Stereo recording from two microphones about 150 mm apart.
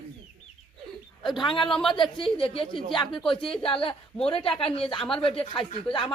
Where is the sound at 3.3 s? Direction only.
35° left (ahead or behind).